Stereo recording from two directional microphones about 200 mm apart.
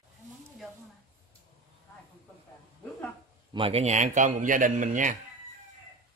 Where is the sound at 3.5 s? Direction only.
30° right (ahead or behind).